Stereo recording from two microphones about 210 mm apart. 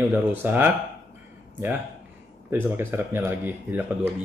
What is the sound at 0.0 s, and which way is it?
Speech, 10° right (ahead or behind).